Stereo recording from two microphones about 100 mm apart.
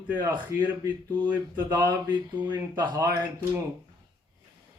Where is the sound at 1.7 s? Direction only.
45° right (ahead or behind).